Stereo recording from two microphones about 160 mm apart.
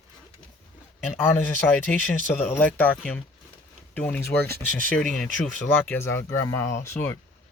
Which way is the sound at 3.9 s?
10° left (ahead or behind).